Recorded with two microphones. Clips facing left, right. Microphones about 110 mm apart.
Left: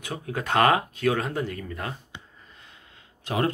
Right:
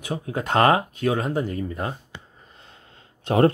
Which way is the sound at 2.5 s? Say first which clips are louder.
Right 2 dB; 35° right (ahead or behind).